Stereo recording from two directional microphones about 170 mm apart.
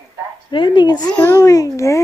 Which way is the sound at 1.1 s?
10° left (ahead or behind).